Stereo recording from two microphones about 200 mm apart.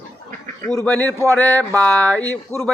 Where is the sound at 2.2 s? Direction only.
15° right (ahead or behind).